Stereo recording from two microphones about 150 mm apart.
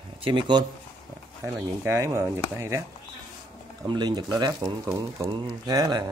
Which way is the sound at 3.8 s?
30° right (ahead or behind).